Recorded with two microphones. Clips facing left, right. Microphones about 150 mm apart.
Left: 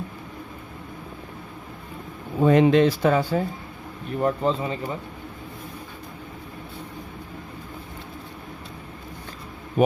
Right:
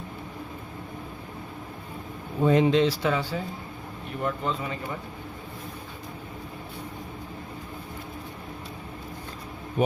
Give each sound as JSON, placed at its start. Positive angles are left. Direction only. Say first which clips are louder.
{"t": 2.4, "sound": "speech", "louder": "left 4 dB", "side_deg": 65}
{"t": 4.2, "sound": "speech", "louder": "left 6 dB", "side_deg": 35}